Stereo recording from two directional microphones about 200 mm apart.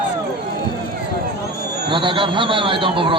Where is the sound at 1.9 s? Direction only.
25° right (ahead or behind).